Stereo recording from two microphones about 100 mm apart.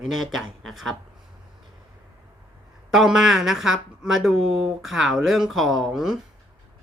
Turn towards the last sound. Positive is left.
turn(degrees=0)  # may be behind; listen again after turning